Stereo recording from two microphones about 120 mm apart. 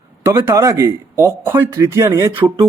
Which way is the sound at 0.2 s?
20° right (ahead or behind).